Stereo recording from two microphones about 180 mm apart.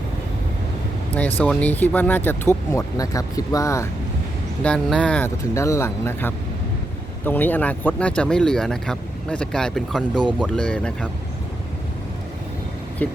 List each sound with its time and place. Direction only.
1.4 s speech: 10° left (ahead or behind)
4.6 s speech: 5° left (ahead or behind)
5.4 s speech: 15° left (ahead or behind)
13.0 s speech: 10° left (ahead or behind)